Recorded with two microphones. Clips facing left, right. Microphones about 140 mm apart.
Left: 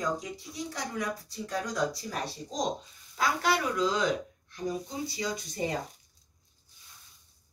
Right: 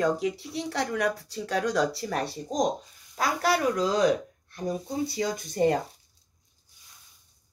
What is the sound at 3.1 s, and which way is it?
A woman's voice, 40° right (ahead or behind).